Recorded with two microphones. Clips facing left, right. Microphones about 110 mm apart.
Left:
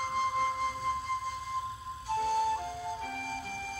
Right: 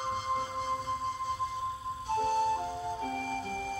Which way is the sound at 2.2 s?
25° right (ahead or behind).